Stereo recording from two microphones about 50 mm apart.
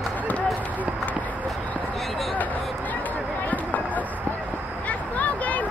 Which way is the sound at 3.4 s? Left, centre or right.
Left.